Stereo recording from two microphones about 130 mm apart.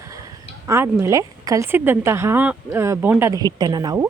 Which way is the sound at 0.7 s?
20° right (ahead or behind).